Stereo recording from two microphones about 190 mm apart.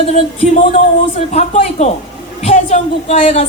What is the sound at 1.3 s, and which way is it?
A man's voice, 35° left (ahead or behind).